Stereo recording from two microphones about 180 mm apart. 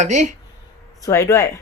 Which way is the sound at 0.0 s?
40° right (ahead or behind).